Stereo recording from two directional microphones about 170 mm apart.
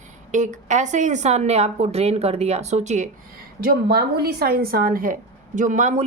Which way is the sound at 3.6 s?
65° right (ahead or behind).